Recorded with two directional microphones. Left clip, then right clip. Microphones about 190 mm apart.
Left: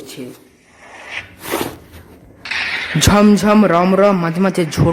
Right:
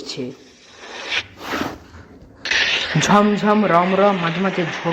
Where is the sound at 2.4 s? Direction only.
15° right (ahead or behind).